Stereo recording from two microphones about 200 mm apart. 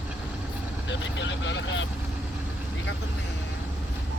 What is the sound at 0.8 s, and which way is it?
Speech, 65° left (ahead or behind).